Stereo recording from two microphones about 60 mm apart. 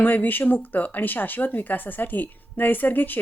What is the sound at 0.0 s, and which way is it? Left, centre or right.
Speech, left.